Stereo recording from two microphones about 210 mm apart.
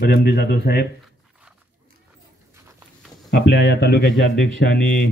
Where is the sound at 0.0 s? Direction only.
50° left (ahead or behind).